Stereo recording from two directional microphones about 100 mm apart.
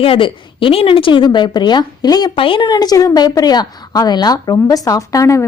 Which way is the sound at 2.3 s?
60° left (ahead or behind).